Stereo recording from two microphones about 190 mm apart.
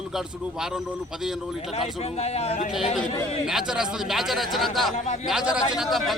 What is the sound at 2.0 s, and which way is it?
Speech, 35° left (ahead or behind).